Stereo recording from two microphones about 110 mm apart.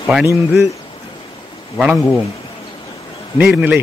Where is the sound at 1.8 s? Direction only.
5° right (ahead or behind).